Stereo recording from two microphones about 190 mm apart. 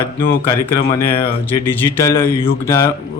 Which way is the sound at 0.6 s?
15° left (ahead or behind).